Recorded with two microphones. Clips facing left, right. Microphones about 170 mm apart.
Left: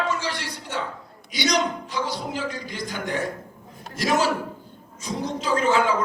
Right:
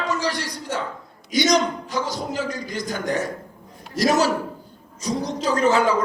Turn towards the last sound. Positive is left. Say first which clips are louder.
# right 2 dB
turn(degrees=-40)  # may be behind; listen again after turning